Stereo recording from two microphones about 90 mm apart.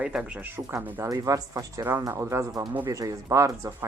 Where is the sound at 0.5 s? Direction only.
25° right (ahead or behind).